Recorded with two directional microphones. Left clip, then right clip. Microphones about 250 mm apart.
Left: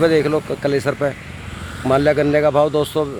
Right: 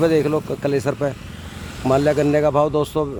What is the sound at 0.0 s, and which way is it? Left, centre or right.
A man's voice, centre.